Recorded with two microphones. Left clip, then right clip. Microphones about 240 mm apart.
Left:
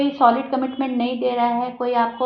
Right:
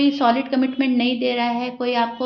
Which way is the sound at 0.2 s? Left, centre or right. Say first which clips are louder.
Left 2 dB; right.